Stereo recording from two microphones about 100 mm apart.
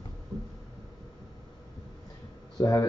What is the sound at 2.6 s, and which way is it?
Speech, 40° left (ahead or behind).